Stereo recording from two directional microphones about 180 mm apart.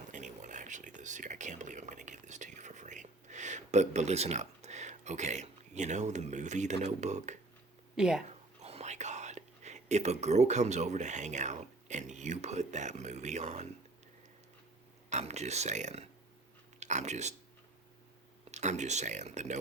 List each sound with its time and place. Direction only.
0.1 s whispering: 45° right (ahead or behind)
6.8 s speech: 40° right (ahead or behind)
7.9 s speech: 5° right (ahead or behind)
8.6 s speech: 35° right (ahead or behind)
15.1 s speech: 40° right (ahead or behind)
18.5 s speech: 40° right (ahead or behind)